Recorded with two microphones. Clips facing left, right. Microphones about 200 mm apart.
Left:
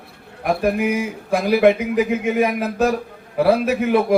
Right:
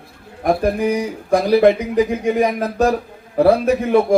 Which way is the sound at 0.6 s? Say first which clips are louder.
Right 1 dB; 35° right (ahead or behind).